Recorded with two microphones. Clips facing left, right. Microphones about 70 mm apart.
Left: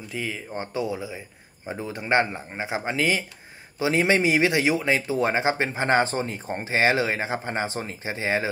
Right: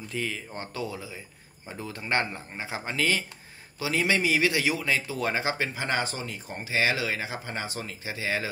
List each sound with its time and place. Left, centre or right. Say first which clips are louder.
0.1 s speech: left 2 dB; centre; by 8.5 s left